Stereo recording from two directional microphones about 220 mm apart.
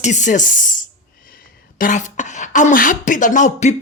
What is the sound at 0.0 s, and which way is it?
Speech, 35° left (ahead or behind).